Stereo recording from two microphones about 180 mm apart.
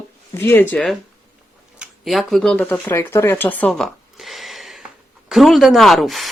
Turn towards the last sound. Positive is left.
turn(degrees=0)  # may be behind; listen again after turning